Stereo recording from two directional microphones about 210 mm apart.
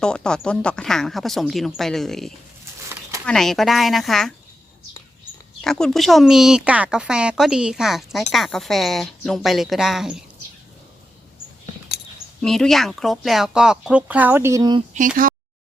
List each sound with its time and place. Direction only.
0.0 s speech: 5° left (ahead or behind)
5.6 s speech: centre (ahead or behind)
12.4 s speech: centre (ahead or behind); by 14.8 s 20° right (ahead or behind)
14.9 s speech: 40° right (ahead or behind)